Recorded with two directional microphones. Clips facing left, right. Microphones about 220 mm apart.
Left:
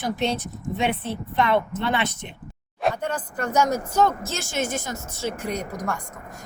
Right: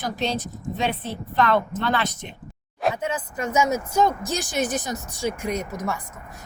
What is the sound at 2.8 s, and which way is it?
Speech, 5° right (ahead or behind).